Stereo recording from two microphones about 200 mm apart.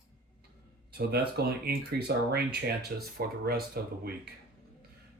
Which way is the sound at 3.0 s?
50° right (ahead or behind).